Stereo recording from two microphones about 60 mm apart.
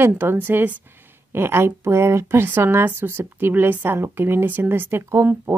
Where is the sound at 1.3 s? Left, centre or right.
Right.